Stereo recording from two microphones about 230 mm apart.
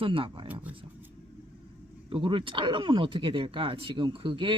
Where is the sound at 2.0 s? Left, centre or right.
Right.